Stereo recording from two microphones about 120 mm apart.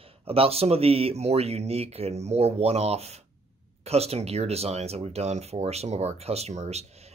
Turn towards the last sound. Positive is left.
turn(degrees=-65)  # may be behind; listen again after turning